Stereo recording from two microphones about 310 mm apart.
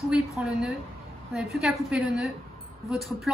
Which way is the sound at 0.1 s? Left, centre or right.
Centre.